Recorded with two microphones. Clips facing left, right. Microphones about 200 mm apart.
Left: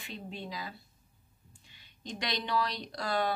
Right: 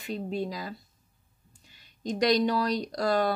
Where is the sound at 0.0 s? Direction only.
40° right (ahead or behind).